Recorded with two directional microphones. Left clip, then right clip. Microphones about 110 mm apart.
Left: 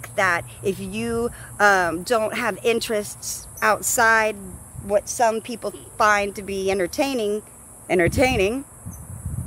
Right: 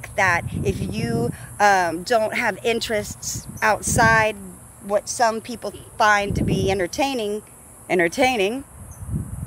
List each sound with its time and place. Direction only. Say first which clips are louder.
0.0 s a woman's voice: right 1 dB; 40° left (ahead or behind)